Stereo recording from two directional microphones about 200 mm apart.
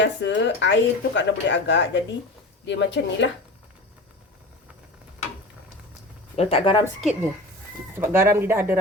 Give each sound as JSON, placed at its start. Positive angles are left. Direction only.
{"t": 0.0, "sound": "speech", "side_deg": 60}
{"t": 6.3, "sound": "speech", "side_deg": 30}
{"t": 7.0, "sound": "speech", "side_deg": -5}